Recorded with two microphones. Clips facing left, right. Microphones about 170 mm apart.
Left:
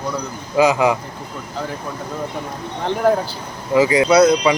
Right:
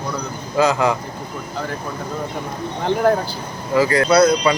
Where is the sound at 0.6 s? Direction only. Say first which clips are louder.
Left 2 dB; 15° left (ahead or behind).